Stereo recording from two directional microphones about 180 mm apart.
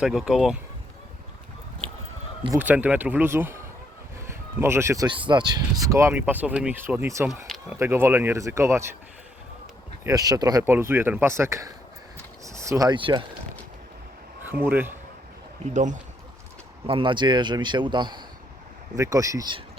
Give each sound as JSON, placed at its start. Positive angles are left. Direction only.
{"t": 0.0, "sound": "speech", "side_deg": 0}
{"t": 2.6, "sound": "speech", "side_deg": -10}
{"t": 10.0, "sound": "speech", "side_deg": -20}
{"t": 12.1, "sound": "a sound", "side_deg": -15}
{"t": 14.6, "sound": "speech", "side_deg": -10}
{"t": 15.7, "sound": "speech", "side_deg": -45}
{"t": 16.8, "sound": "a man's voice", "side_deg": -30}